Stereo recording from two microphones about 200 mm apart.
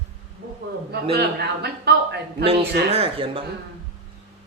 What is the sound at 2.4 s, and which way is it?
A man's voice, 30° right (ahead or behind).